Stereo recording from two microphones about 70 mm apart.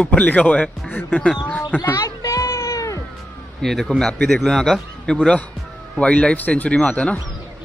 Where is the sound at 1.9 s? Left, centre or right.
Left.